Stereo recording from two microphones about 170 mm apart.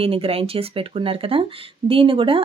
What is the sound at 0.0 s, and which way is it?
Speech, 35° right (ahead or behind).